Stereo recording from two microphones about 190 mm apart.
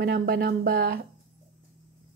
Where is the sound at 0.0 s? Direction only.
55° right (ahead or behind).